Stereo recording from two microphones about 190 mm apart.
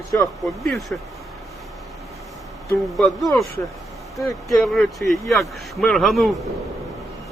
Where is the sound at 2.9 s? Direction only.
Centre (ahead or behind).